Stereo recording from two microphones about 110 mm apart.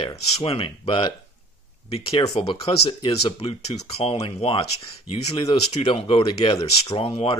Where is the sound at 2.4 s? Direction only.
60° left (ahead or behind).